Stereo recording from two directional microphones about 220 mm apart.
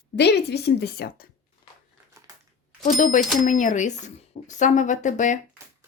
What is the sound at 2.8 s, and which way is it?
Speech, 35° left (ahead or behind).